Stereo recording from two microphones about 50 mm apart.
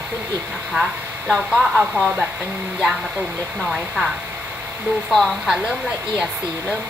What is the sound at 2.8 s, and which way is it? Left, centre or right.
Speech, centre.